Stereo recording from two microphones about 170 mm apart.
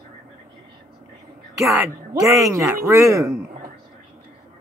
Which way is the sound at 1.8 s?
15° right (ahead or behind).